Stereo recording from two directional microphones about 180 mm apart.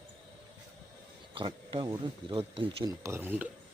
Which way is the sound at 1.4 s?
25° right (ahead or behind).